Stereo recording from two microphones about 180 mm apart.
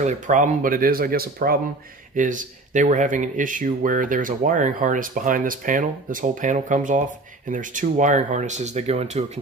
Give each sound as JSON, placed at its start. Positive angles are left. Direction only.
{"t": 0.0, "sound": "speech", "side_deg": -45}